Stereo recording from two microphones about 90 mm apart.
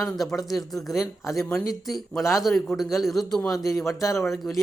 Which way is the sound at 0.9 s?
35° left (ahead or behind).